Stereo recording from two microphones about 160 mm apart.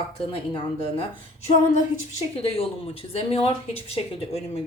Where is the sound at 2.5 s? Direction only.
35° left (ahead or behind).